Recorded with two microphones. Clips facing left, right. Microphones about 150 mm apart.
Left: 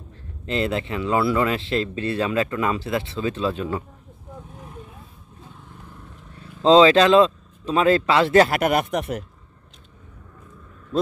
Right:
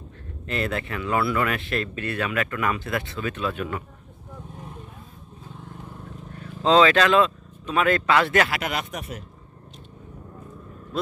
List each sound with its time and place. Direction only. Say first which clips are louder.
0.5 s speech: left 4 dB; 25° left (ahead or behind)
6.6 s speech: left 4 dB; 25° left (ahead or behind)
8.5 s speech: left 8 dB; 55° left (ahead or behind)